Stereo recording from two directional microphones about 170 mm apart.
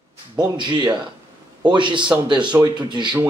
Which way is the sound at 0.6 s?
25° right (ahead or behind).